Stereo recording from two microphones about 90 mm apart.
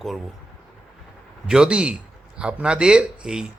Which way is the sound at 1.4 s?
10° right (ahead or behind).